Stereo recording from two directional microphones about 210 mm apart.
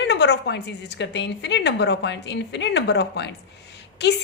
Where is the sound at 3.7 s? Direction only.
55° left (ahead or behind).